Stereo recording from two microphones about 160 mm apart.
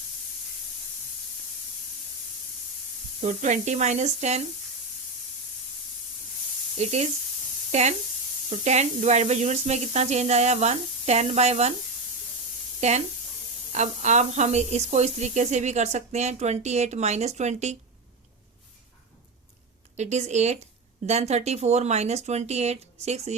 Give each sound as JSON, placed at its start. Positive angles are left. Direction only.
{"t": 3.2, "sound": "speech", "side_deg": -50}
{"t": 6.7, "sound": "speech", "side_deg": -45}
{"t": 12.8, "sound": "speech", "side_deg": -45}
{"t": 20.0, "sound": "speech", "side_deg": -45}